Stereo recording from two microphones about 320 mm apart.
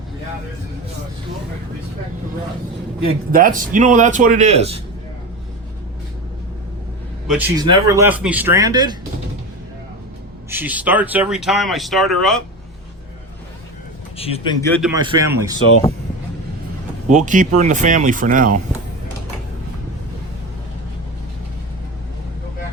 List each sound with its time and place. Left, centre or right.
3.3 s speech: right
7.3 s speech: centre
10.5 s speech: centre
14.2 s a man's voice: centre
14.8 s speech: centre
17.1 s speech: right